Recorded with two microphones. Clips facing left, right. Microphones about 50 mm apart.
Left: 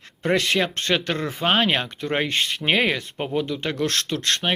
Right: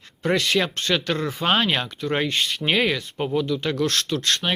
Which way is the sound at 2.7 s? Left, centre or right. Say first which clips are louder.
Left 1 dB; left.